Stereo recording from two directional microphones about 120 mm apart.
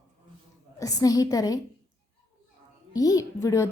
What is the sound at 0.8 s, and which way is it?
Speech, 30° left (ahead or behind).